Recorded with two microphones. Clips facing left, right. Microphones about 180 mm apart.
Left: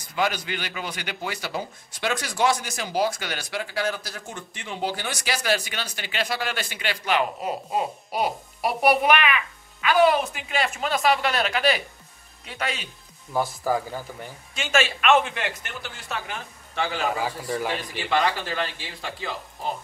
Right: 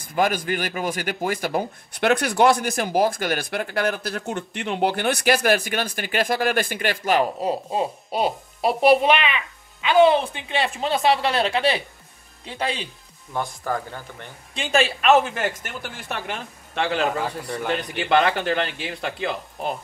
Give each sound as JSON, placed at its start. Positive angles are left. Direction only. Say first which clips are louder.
{"t": 0.1, "sound": "speech", "louder": "right 5 dB", "side_deg": -50}
{"t": 13.3, "sound": "speech", "louder": "left 2 dB", "side_deg": 5}
{"t": 14.5, "sound": "speech", "louder": "right 3 dB", "side_deg": -35}
{"t": 17.1, "sound": "speech", "louder": "even", "side_deg": 0}
{"t": 17.9, "sound": "speech", "louder": "right 5 dB", "side_deg": -60}